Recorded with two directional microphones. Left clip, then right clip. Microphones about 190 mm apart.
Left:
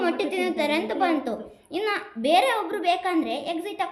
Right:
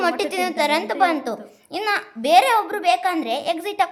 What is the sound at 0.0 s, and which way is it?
A woman's voice, 35° right (ahead or behind).